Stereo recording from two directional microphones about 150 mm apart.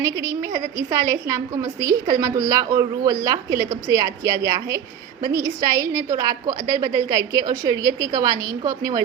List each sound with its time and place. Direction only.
0.0 s a woman's voice: 20° right (ahead or behind)